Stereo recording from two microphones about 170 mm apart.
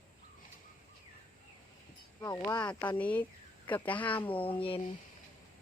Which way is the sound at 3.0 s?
10° left (ahead or behind).